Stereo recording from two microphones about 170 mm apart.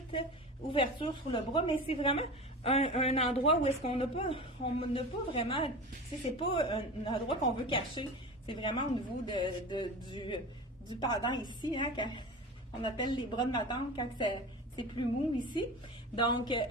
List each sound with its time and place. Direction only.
0.7 s a woman's voice: 30° left (ahead or behind)